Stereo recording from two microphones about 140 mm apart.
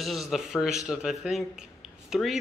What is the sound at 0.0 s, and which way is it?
A man's voice, centre (ahead or behind).